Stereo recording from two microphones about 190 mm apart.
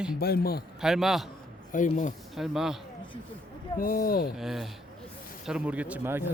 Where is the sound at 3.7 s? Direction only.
50° left (ahead or behind).